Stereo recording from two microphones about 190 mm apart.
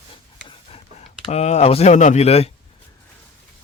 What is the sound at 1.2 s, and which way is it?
Speech, 35° left (ahead or behind).